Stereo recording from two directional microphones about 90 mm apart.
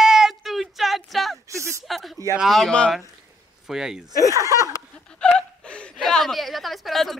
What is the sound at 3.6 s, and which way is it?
Speech, 5° right (ahead or behind).